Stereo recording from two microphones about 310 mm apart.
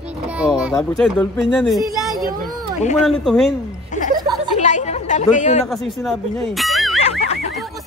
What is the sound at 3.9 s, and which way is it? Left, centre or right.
Chuckle, left.